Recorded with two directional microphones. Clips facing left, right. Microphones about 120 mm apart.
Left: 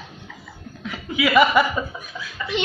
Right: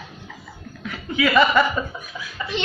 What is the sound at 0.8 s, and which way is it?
Chuckle, centre (ahead or behind).